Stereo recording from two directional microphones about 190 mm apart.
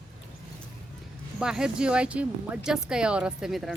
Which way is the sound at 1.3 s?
5° right (ahead or behind).